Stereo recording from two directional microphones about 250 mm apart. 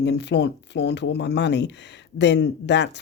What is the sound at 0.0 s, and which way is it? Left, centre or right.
Speech, left.